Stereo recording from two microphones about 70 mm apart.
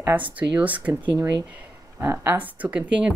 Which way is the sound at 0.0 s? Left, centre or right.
Right.